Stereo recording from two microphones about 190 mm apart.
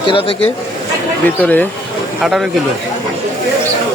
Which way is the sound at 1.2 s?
10° left (ahead or behind).